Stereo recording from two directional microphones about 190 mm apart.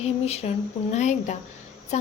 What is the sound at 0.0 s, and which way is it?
A woman's voice, 35° left (ahead or behind).